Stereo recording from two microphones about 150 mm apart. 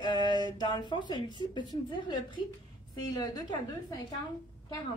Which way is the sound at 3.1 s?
25° left (ahead or behind).